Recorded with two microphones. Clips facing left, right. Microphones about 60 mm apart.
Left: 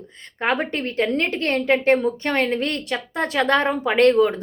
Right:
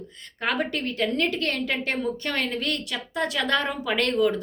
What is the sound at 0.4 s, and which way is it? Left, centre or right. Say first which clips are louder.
A woman's voice: left 4 dB; left.